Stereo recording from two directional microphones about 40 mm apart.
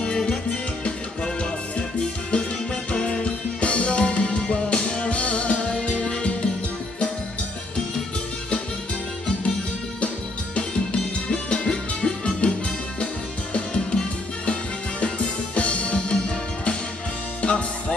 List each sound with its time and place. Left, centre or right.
0.0 s music: centre
9.9 s music: left
17.4 s music: left